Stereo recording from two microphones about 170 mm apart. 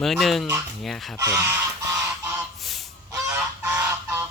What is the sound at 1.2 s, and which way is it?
Speech, 20° right (ahead or behind).